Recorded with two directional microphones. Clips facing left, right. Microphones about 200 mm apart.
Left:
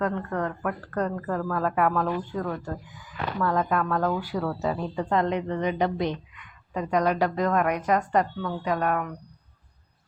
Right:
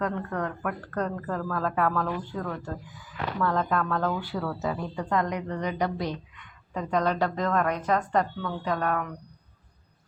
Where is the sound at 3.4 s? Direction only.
10° left (ahead or behind).